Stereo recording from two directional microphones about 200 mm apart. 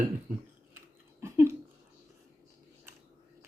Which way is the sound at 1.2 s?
15° right (ahead or behind).